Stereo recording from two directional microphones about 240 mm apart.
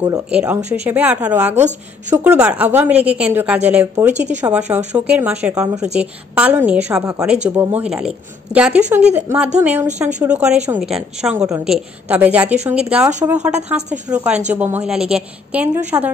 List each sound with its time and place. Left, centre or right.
0.0 s speech: centre
0.6 s speech: right
0.8 s speech: centre